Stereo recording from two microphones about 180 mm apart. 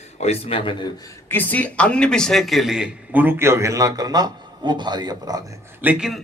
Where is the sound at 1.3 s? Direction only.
10° left (ahead or behind); by 5.4 s 20° right (ahead or behind).